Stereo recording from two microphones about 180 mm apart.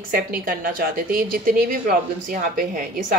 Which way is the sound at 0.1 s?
55° right (ahead or behind).